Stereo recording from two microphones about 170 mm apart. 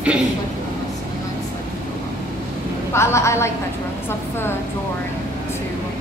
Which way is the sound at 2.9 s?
15° left (ahead or behind).